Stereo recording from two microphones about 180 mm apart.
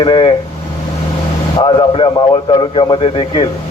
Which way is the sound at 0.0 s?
25° left (ahead or behind).